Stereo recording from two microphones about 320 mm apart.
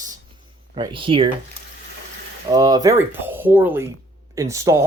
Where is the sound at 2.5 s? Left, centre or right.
Centre.